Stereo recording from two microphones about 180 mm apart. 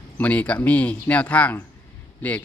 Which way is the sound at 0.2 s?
10° left (ahead or behind).